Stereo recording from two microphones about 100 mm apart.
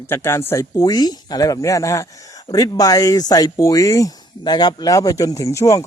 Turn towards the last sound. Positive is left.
turn(degrees=30)  # may be behind; listen again after turning